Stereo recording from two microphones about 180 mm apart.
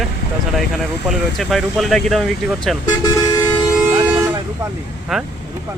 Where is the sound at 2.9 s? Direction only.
20° left (ahead or behind).